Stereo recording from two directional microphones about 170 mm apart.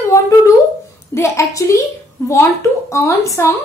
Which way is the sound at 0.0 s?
15° left (ahead or behind).